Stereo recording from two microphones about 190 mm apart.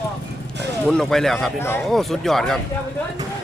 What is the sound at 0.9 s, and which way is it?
Speech, centre (ahead or behind).